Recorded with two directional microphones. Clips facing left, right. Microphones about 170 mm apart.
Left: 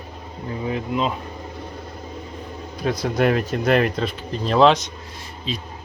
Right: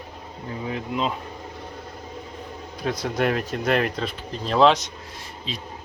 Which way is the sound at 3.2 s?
Centre (ahead or behind).